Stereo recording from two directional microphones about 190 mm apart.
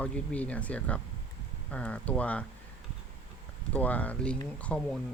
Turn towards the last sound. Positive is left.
turn(degrees=5)  # may be behind; listen again after turning